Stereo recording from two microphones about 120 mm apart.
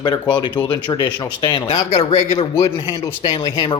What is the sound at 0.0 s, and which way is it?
Speech, 35° left (ahead or behind).